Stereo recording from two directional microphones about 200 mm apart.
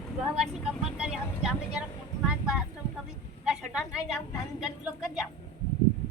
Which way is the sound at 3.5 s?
Centre (ahead or behind).